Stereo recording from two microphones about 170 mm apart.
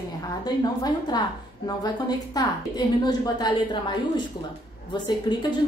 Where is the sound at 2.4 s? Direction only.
20° left (ahead or behind).